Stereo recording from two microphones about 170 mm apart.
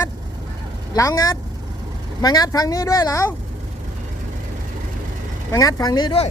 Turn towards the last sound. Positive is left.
turn(degrees=30)  # may be behind; listen again after turning